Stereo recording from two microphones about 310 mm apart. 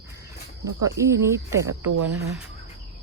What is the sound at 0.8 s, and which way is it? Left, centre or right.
Cricket, centre.